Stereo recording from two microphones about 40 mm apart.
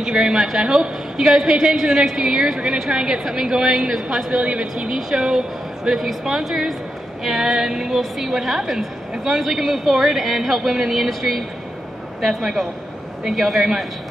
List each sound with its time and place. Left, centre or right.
0.0 s a man's voice: centre
4.3 s speech: right
4.8 s a man's voice: centre